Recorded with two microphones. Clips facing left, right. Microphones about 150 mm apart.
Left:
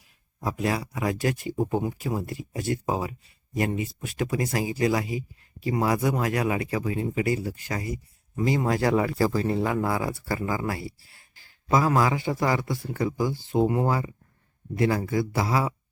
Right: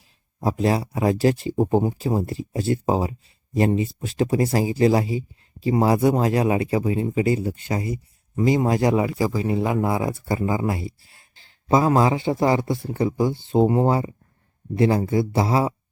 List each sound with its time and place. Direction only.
0.3 s speech: 30° right (ahead or behind)